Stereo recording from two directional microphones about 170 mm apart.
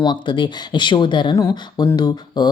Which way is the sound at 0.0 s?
25° left (ahead or behind).